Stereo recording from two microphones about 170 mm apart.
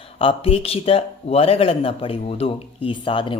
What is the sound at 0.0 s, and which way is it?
A man's voice, 35° left (ahead or behind).